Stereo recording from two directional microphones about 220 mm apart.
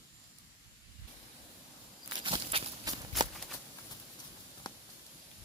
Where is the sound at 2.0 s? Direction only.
25° right (ahead or behind).